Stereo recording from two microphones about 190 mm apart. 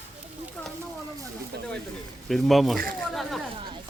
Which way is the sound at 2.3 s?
Centre (ahead or behind).